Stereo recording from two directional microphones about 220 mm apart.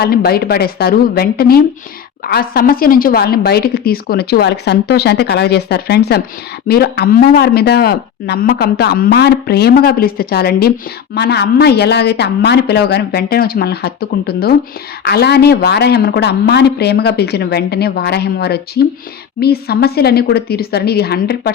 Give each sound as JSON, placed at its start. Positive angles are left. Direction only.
{"t": 0.0, "sound": "speech", "side_deg": 45}